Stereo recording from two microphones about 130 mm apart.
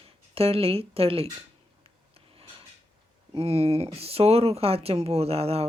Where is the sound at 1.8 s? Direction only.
45° right (ahead or behind).